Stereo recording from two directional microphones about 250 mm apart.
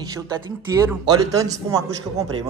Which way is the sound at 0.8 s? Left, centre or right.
Centre.